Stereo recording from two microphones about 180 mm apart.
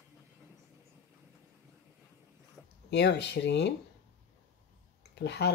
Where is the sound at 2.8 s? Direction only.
70° left (ahead or behind).